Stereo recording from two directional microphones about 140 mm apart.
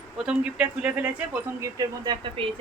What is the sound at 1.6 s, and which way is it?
Speech, 25° right (ahead or behind).